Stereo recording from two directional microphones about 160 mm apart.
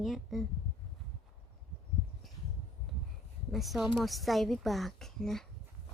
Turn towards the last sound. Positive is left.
turn(degrees=5)  # may be behind; listen again after turning